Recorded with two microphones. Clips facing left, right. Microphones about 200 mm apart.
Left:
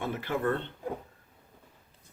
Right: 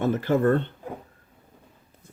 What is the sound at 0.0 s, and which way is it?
Speech, 45° right (ahead or behind).